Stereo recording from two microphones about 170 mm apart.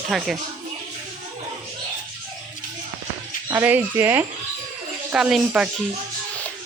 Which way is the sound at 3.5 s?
10° right (ahead or behind).